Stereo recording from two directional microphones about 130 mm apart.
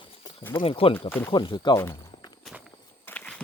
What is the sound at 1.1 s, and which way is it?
Speech, 15° left (ahead or behind).